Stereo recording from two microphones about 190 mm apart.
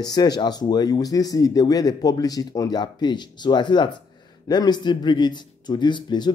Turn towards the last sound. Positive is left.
turn(degrees=25)  # may be behind; listen again after turning